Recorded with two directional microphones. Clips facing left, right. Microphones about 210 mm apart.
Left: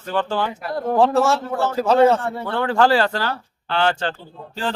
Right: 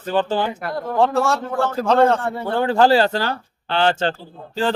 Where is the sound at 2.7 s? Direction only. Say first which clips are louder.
Right 2 dB; 30° right (ahead or behind).